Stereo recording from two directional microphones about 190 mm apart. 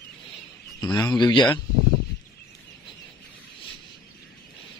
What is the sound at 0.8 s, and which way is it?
Speech, 20° left (ahead or behind).